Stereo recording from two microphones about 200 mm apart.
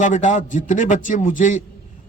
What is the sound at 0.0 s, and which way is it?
A man's voice, 40° left (ahead or behind).